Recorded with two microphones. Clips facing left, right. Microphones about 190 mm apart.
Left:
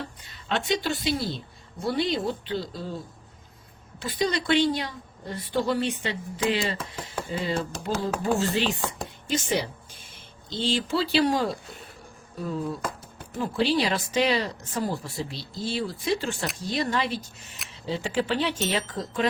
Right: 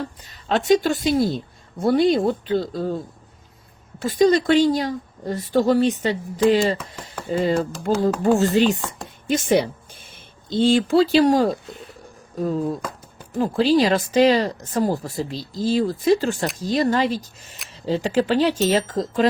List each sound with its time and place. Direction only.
0.2 s a woman's voice: 40° right (ahead or behind)
4.0 s a woman's voice: 45° right (ahead or behind)